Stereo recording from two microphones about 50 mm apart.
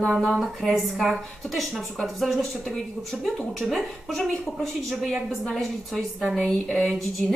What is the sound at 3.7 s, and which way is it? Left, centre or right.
Speech, centre.